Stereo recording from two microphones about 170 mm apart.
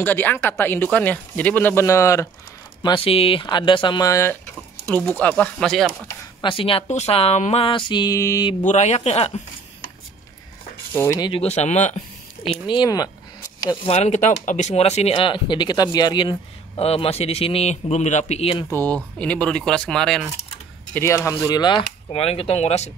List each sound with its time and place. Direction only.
0.0 s speech: 10° left (ahead or behind)
2.8 s speech: 30° left (ahead or behind); by 5.9 s centre (ahead or behind)
6.0 s speech: 30° left (ahead or behind)
8.6 s speech: 40° left (ahead or behind)
11.0 s speech: 20° left (ahead or behind)
11.4 s speech: 40° left (ahead or behind)
12.4 s speech: 30° left (ahead or behind)
13.8 s speech: 40° left (ahead or behind)
18.7 s speech: 10° left (ahead or behind)
20.9 s speech: 15° left (ahead or behind); by 22.8 s 40° left (ahead or behind)